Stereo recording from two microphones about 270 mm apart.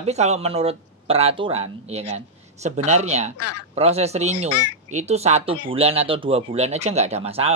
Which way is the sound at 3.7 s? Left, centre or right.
Right.